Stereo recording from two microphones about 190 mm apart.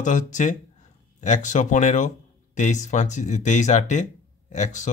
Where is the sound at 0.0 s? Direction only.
40° left (ahead or behind).